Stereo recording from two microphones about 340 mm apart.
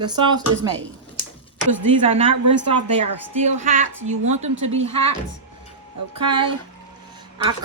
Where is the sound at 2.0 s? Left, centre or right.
Centre.